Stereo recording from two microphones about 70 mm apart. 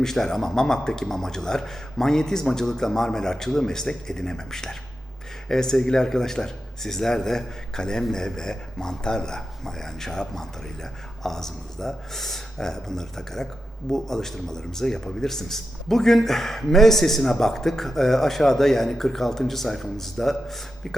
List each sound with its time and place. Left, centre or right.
0.0 s a man's voice: centre